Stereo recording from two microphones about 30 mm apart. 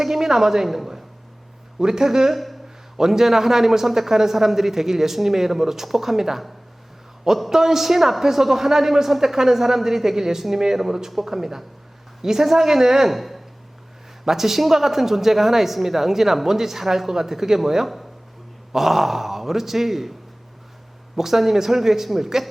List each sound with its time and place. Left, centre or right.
0.0 s a woman's voice: centre
1.8 s speech: right
2.3 s a sound: centre
3.0 s a woman's voice: centre
7.5 s a woman's voice: centre
13.1 s a woman's voice: centre
21.2 s a woman's voice: centre